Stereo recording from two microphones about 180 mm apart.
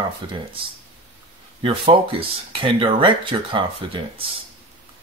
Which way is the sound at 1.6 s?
30° right (ahead or behind).